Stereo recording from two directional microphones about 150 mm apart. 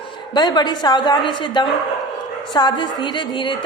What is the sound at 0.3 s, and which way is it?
A woman's voice, 30° left (ahead or behind).